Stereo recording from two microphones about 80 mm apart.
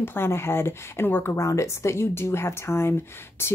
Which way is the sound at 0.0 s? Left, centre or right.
Left.